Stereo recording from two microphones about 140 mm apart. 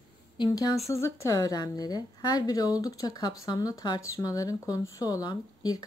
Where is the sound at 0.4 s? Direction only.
30° left (ahead or behind).